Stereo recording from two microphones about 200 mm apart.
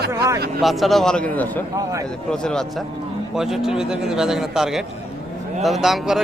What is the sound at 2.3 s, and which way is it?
A man's voice, 5° left (ahead or behind).